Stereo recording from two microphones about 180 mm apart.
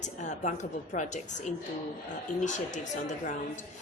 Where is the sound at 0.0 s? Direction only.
40° left (ahead or behind).